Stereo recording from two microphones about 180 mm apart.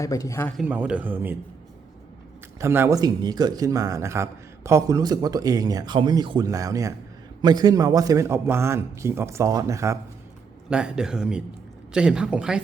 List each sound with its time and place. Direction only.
0.0 s a man's voice: 20° left (ahead or behind)
0.5 s a man's voice: 10° right (ahead or behind)
2.6 s a man's voice: 15° right (ahead or behind)
10.7 s speech: 5° right (ahead or behind)